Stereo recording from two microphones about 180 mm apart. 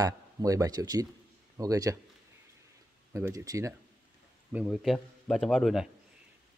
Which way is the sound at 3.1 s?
15° right (ahead or behind).